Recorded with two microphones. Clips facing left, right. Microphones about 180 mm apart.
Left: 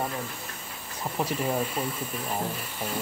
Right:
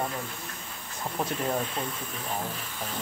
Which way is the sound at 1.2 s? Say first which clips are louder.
Left 2 dB; 5° left (ahead or behind).